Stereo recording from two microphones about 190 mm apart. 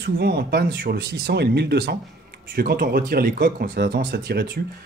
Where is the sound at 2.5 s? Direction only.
50° right (ahead or behind).